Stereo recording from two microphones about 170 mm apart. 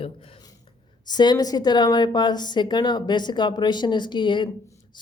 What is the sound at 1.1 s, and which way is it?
Speech, 25° left (ahead or behind).